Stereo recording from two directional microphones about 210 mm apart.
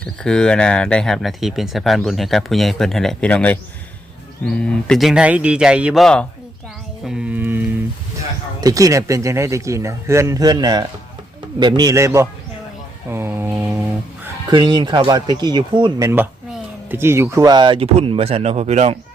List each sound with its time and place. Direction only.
0.0 s speech: 5° left (ahead or behind)
7.0 s music: 5° right (ahead or behind)
8.6 s speech: 15° right (ahead or behind)
13.1 s mantra: 10° right (ahead or behind)
14.5 s speech: 20° right (ahead or behind)